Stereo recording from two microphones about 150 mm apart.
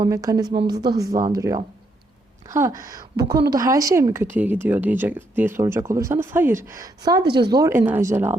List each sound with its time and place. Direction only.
0.0 s a woman's voice: 25° right (ahead or behind)
7.5 s speech: 20° right (ahead or behind)